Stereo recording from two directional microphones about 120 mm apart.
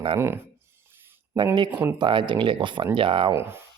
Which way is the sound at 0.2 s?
20° right (ahead or behind).